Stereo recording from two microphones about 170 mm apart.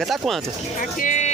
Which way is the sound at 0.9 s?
50° left (ahead or behind).